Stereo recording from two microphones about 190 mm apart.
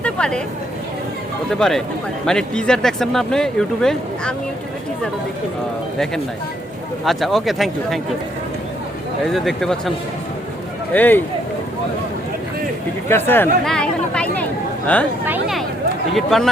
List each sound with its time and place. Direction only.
0.0 s a sound: 5° left (ahead or behind)
1.5 s speech: centre (ahead or behind)
7.0 s speech: centre (ahead or behind)
9.2 s speech: centre (ahead or behind)
10.9 s speech: 10° left (ahead or behind)
13.1 s speech: 10° left (ahead or behind)